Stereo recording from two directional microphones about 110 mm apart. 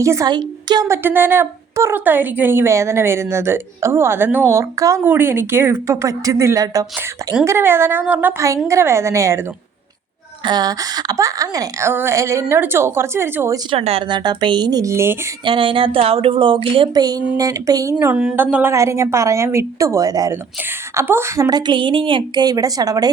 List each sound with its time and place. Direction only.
0.0 s a woman's voice: 25° right (ahead or behind)
0.3 s a woman's voice: 40° right (ahead or behind)
0.9 s a woman's voice: 20° right (ahead or behind)
10.4 s a woman's voice: 40° right (ahead or behind); by 13.6 s 20° right (ahead or behind)
13.7 s speech: 65° right (ahead or behind)
14.1 s a woman's voice: 40° right (ahead or behind); by 15.2 s 25° right (ahead or behind)
15.4 s speech: 55° right (ahead or behind)
16.9 s a woman's voice: 35° right (ahead or behind)
18.0 s a woman's voice: 10° right (ahead or behind); by 20.4 s 35° right (ahead or behind)
20.9 s a woman's voice: 20° right (ahead or behind)
21.5 s a woman's voice: 50° right (ahead or behind)